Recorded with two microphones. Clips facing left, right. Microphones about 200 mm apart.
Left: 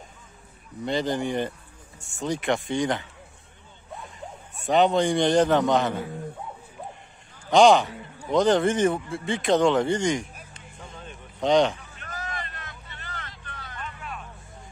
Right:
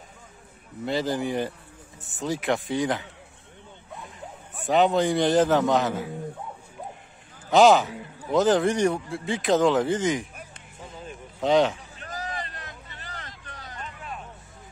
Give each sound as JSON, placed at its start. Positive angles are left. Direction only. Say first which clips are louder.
{"t": 0.8, "sound": "a man's voice", "louder": "even", "side_deg": -5}
{"t": 4.6, "sound": "a man's voice", "louder": "even", "side_deg": 0}
{"t": 7.4, "sound": "a man's voice", "louder": "even", "side_deg": -5}
{"t": 10.8, "sound": "a sound", "louder": "right 3 dB", "side_deg": -5}
{"t": 11.8, "sound": "vehicle", "louder": "right 2 dB", "side_deg": -35}